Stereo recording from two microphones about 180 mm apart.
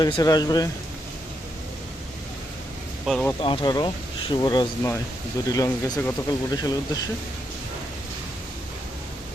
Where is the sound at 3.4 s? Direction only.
30° left (ahead or behind).